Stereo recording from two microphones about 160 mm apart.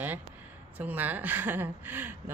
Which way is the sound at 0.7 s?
10° right (ahead or behind).